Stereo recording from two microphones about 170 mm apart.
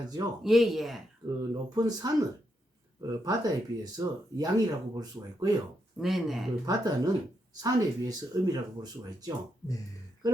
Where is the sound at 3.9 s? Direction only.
20° right (ahead or behind).